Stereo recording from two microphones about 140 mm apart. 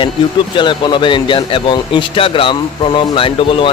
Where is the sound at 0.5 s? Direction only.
35° left (ahead or behind).